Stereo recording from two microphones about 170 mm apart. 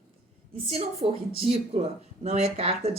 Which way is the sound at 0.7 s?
35° right (ahead or behind).